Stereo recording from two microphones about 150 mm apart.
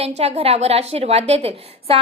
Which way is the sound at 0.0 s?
45° right (ahead or behind).